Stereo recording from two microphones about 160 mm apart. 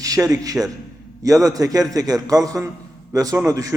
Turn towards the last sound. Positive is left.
turn(degrees=-20)  # may be behind; listen again after turning